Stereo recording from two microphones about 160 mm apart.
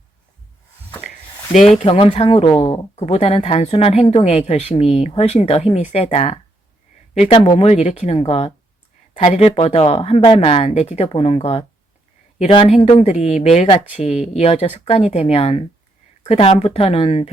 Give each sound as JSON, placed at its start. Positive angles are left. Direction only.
{"t": 1.8, "sound": "speech", "side_deg": 35}
{"t": 7.3, "sound": "speech", "side_deg": 30}
{"t": 12.6, "sound": "speech", "side_deg": 40}